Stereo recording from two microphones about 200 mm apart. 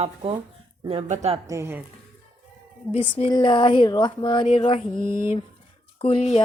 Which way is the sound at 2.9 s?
25° left (ahead or behind).